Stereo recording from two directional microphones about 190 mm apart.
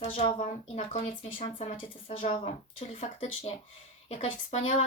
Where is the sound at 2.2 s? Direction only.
30° left (ahead or behind).